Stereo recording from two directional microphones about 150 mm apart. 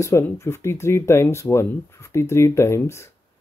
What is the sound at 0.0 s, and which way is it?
Speech, 20° left (ahead or behind).